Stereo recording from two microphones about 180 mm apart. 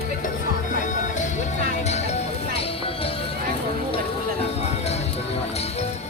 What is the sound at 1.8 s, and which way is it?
Music, 35° left (ahead or behind).